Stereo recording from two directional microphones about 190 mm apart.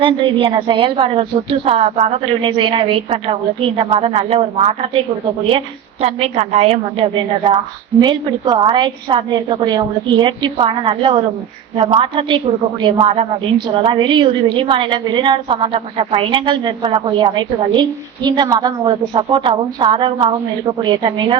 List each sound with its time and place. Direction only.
0.0 s a woman's voice: 25° right (ahead or behind)